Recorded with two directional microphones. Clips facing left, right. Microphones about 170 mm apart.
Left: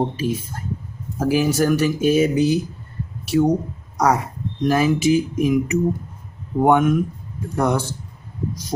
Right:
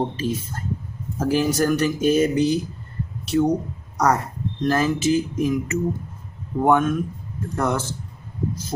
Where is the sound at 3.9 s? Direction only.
10° left (ahead or behind).